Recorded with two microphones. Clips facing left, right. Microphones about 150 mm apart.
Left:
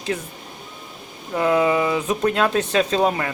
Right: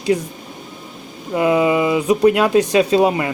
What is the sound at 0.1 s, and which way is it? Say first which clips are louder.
Speech: right 10 dB; 15° right (ahead or behind).